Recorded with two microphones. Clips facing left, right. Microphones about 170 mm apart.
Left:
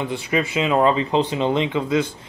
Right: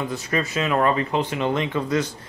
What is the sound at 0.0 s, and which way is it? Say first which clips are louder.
Speech: left 3 dB; 25° left (ahead or behind).